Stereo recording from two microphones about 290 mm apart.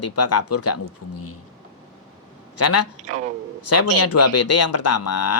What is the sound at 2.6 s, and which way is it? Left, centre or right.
Speech, left.